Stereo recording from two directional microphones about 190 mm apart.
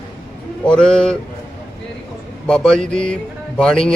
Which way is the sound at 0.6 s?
5° left (ahead or behind).